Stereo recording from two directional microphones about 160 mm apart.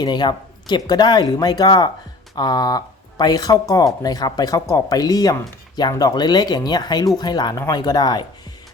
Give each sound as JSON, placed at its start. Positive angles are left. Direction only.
{"t": 0.0, "sound": "speech", "side_deg": 30}